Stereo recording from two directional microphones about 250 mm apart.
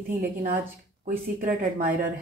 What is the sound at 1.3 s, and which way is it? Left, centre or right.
Speech, right.